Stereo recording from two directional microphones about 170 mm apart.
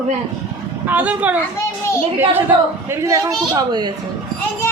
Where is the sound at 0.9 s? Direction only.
10° right (ahead or behind).